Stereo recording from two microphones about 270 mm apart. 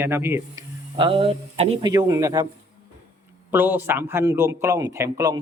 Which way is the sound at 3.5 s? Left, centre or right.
Centre.